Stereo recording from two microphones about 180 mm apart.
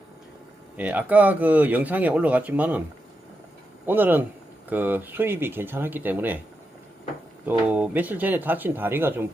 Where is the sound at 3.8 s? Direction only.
10° right (ahead or behind).